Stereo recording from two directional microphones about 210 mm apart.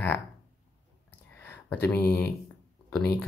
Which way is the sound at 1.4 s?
10° left (ahead or behind).